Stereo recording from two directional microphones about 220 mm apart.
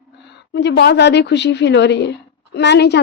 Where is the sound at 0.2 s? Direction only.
50° left (ahead or behind).